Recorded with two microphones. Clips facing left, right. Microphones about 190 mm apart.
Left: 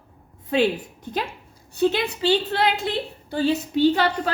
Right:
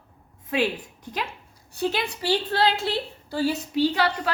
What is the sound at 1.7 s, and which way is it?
A woman's voice, 25° left (ahead or behind).